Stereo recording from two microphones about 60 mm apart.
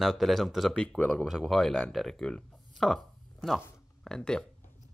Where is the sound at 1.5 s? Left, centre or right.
Centre.